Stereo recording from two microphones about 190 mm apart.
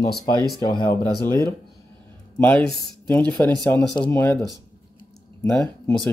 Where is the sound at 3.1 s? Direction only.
10° left (ahead or behind).